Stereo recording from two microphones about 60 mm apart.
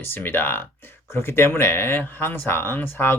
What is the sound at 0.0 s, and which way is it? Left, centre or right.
Speech, left.